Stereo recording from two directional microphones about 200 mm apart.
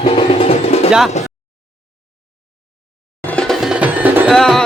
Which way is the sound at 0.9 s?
Centre (ahead or behind).